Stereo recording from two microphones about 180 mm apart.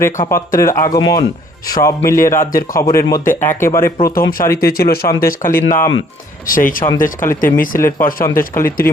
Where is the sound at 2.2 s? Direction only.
15° left (ahead or behind).